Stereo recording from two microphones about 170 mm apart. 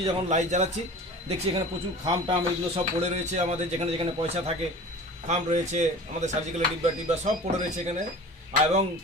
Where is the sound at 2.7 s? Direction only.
40° right (ahead or behind).